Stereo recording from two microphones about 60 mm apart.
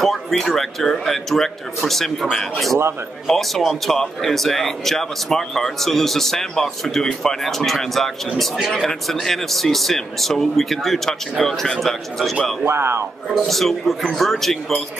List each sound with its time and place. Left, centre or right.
0.0 s a man's voice: centre
12.6 s speech: right
13.3 s a man's voice: centre